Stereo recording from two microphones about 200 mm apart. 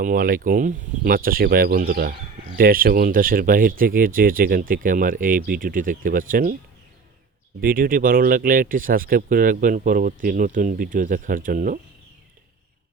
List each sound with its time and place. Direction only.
0.0 s speech: 45° right (ahead or behind)
7.6 s speech: 45° right (ahead or behind)